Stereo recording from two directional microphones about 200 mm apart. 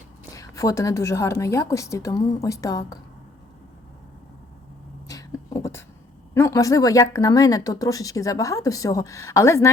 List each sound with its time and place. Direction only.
0.3 s speech: 15° left (ahead or behind)
5.0 s a sound: 15° left (ahead or behind)
6.3 s speech: 15° left (ahead or behind)